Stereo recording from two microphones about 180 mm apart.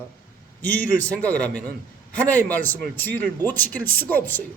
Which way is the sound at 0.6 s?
10° left (ahead or behind).